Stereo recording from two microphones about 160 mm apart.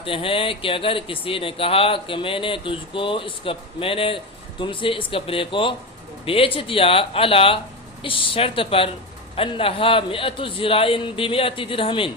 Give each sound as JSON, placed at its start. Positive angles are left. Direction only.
{"t": 0.0, "sound": "speech", "side_deg": 35}